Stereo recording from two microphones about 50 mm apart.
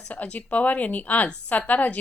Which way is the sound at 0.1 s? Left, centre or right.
Left.